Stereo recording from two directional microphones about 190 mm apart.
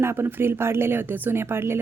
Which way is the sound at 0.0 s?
15° right (ahead or behind).